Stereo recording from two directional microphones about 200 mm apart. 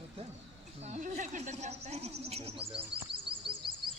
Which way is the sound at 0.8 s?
35° right (ahead or behind).